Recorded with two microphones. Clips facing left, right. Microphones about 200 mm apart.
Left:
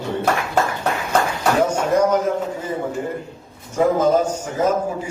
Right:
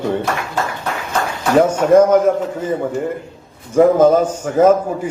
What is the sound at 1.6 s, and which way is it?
Speech, 50° right (ahead or behind).